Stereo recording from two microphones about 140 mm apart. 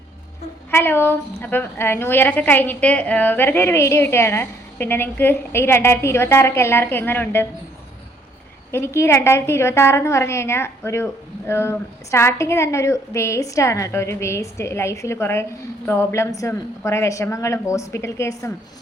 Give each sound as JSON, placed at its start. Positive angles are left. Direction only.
{"t": 0.7, "sound": "a woman's voice", "side_deg": 15}
{"t": 8.7, "sound": "a woman's voice", "side_deg": 20}